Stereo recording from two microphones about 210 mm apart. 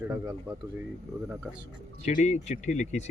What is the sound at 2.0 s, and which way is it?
Speech, 35° left (ahead or behind).